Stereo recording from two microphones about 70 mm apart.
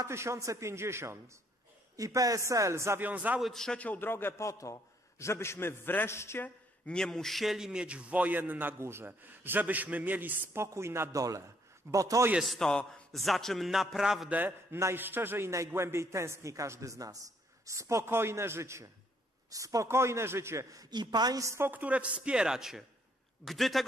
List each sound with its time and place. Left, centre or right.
0.1 s a man's voice: right
2.0 s a man's voice: right
3.0 s a man's voice: right
3.3 s a man's voice: centre
3.6 s a man's voice: centre; by 6.4 s left
6.4 s a man's voice: centre; by 10.5 s right
10.5 s a man's voice: right
11.1 s a man's voice: right
12.4 s a man's voice: centre
14.3 s a man's voice: right
20.7 s a man's voice: right
21.4 s a man's voice: right
21.6 s a woman's voice: right; by 23.8 s centre